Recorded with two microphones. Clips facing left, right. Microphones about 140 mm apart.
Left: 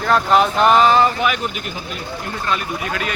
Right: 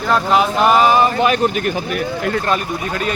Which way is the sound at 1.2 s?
40° right (ahead or behind).